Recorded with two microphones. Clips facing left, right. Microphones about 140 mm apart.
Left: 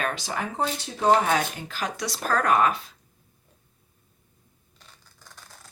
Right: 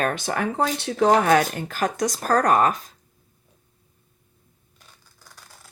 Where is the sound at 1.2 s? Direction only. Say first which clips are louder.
Right 6 dB; 55° right (ahead or behind).